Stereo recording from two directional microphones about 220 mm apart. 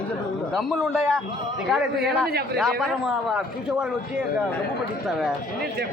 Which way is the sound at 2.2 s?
45° right (ahead or behind).